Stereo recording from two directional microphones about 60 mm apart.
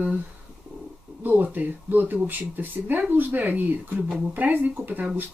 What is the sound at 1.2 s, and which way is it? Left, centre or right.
Speech, right.